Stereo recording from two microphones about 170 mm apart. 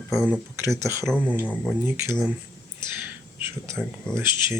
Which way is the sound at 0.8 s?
15° right (ahead or behind).